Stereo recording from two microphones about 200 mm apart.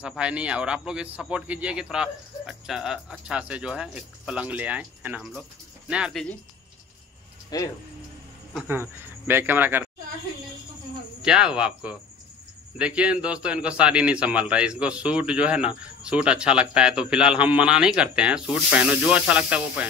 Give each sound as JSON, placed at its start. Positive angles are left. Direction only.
{"t": 0.0, "sound": "a man's voice", "side_deg": -5}
{"t": 7.5, "sound": "speech", "side_deg": 20}
{"t": 8.5, "sound": "speech", "side_deg": -10}
{"t": 11.2, "sound": "a man's voice", "side_deg": -5}